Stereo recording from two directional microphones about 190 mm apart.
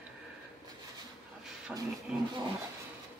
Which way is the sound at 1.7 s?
Centre (ahead or behind).